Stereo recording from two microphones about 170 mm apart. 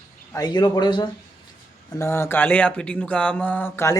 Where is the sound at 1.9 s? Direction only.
15° left (ahead or behind).